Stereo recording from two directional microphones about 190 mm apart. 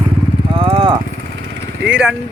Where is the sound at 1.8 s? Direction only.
5° right (ahead or behind).